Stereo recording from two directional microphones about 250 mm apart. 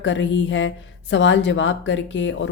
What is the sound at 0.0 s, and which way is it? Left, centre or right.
Speech, left.